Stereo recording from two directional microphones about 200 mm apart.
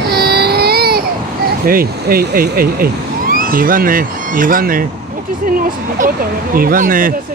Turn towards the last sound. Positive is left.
turn(degrees=-45)  # may be behind; listen again after turning